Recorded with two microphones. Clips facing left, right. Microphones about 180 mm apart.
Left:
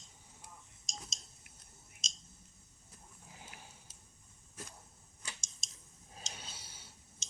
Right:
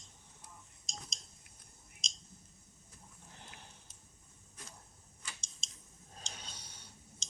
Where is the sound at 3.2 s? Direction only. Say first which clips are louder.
Left 1 dB; 5° left (ahead or behind).